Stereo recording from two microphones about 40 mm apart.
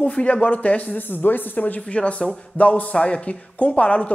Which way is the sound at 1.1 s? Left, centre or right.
Left.